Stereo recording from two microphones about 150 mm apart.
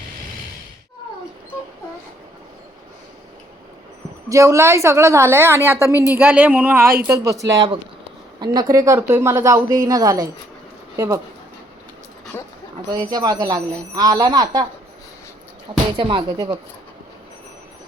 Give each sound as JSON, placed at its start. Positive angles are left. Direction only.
{"t": 4.3, "sound": "a woman's voice", "side_deg": -20}
{"t": 12.3, "sound": "speech", "side_deg": 15}
{"t": 12.9, "sound": "a woman's voice", "side_deg": -30}
{"t": 16.0, "sound": "speech", "side_deg": -35}